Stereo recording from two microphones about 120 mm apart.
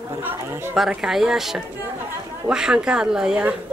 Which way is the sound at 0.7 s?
5° right (ahead or behind).